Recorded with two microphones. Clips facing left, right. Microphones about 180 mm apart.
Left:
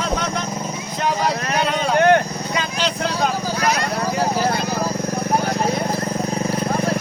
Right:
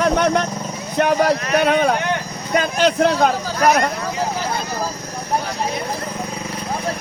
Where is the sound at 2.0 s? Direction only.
55° left (ahead or behind).